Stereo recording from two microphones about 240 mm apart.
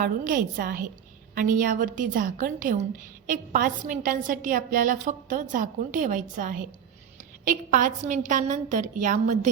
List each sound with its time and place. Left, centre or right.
0.0 s a woman's voice: right